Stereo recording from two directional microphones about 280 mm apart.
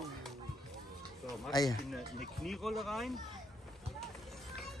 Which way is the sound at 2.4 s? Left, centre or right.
Centre.